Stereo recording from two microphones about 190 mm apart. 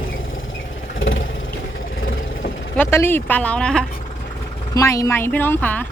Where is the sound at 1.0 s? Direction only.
90° left.